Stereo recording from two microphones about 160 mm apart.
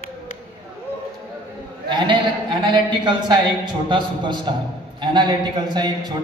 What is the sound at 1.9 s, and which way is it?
A man's voice, 30° right (ahead or behind).